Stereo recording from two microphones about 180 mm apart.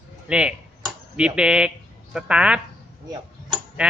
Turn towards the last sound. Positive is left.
turn(degrees=-5)  # may be behind; listen again after turning